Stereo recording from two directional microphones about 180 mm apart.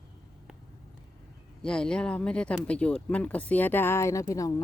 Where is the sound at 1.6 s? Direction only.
5° left (ahead or behind).